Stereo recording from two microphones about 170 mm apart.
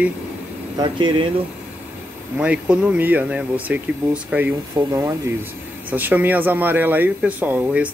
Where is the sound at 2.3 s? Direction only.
5° right (ahead or behind).